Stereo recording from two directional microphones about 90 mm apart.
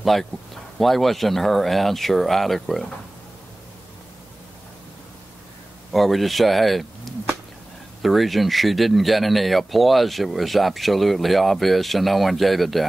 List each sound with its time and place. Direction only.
0.0 s speech: centre (ahead or behind)
5.9 s speech: centre (ahead or behind)